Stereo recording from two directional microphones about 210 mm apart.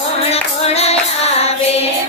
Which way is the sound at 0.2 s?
30° left (ahead or behind).